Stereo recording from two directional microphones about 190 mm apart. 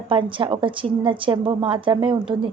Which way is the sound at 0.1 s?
25° right (ahead or behind).